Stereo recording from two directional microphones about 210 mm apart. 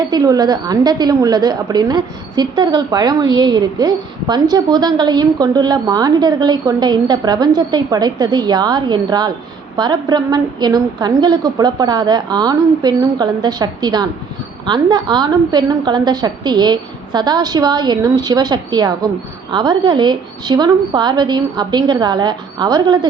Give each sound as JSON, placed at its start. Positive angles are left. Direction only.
{"t": 0.1, "sound": "a woman's voice", "side_deg": -20}